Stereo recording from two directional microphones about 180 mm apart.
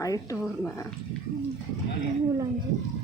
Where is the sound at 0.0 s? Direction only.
20° left (ahead or behind).